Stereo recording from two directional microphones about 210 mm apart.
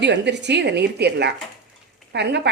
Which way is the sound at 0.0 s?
55° right (ahead or behind).